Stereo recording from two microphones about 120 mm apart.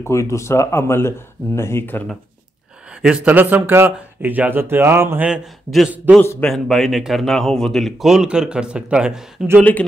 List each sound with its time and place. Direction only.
0.0 s speech: 25° left (ahead or behind)
2.9 s speech: 10° right (ahead or behind)
5.3 s a man's voice: centre (ahead or behind)
9.6 s speech: 10° left (ahead or behind)